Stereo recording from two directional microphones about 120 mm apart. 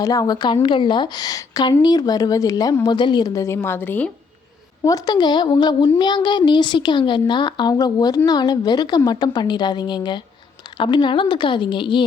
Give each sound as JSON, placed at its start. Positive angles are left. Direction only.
{"t": 0.0, "sound": "a woman's voice", "side_deg": 30}
{"t": 4.8, "sound": "a woman's voice", "side_deg": 30}